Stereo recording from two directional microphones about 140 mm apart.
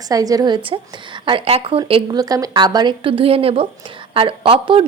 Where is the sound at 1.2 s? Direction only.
40° right (ahead or behind).